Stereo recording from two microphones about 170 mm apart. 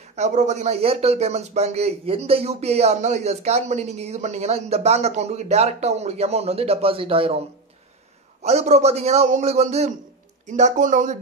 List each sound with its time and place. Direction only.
0.1 s speech: 45° right (ahead or behind)